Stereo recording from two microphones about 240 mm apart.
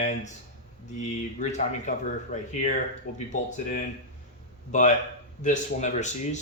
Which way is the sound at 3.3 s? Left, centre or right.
Left.